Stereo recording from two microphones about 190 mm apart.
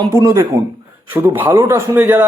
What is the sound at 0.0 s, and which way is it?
A man's voice, 15° right (ahead or behind).